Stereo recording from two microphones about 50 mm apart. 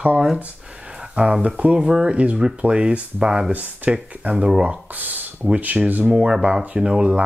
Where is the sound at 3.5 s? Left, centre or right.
Right.